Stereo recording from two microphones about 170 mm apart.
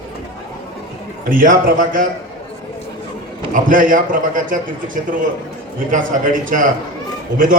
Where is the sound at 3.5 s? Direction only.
55° right (ahead or behind).